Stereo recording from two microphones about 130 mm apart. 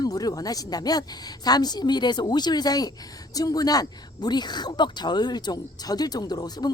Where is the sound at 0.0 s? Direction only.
30° left (ahead or behind).